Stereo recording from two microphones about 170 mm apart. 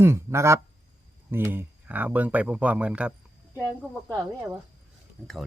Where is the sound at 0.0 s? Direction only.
15° right (ahead or behind).